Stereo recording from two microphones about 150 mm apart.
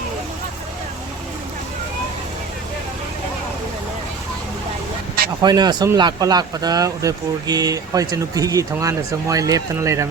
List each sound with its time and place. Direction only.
5.4 s speech: 30° right (ahead or behind)